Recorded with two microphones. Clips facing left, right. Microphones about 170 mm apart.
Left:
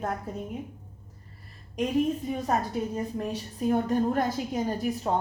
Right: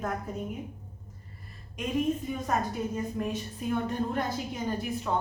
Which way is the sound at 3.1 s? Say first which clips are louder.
Even; 35° left (ahead or behind).